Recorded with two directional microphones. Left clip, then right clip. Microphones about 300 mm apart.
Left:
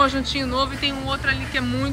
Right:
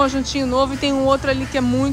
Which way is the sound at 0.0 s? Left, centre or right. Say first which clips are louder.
Right 1 dB; centre.